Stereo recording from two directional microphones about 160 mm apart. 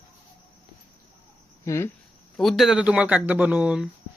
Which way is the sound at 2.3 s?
Centre (ahead or behind).